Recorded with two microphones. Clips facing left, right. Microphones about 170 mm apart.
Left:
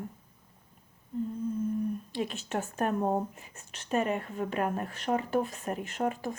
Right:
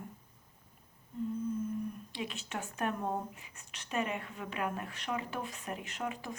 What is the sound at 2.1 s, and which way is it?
A woman's voice, 45° left (ahead or behind).